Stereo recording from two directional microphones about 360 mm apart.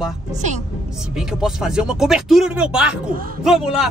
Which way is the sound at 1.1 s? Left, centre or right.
Centre.